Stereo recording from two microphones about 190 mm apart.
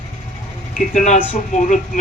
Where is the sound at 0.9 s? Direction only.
40° left (ahead or behind).